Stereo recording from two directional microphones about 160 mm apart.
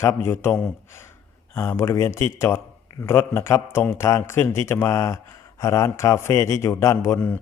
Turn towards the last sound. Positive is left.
turn(degrees=15)  # may be behind; listen again after turning